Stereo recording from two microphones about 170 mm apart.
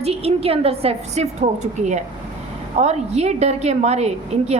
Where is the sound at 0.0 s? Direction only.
35° right (ahead or behind).